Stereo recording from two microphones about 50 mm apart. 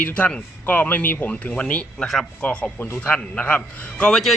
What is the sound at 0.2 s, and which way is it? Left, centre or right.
Speech, left.